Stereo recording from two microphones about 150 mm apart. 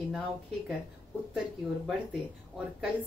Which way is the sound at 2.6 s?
5° right (ahead or behind).